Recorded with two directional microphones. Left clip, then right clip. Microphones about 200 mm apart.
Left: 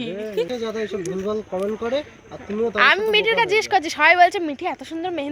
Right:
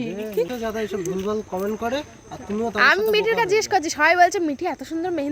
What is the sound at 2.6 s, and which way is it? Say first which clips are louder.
Speech: left 1 dB; 35° right (ahead or behind).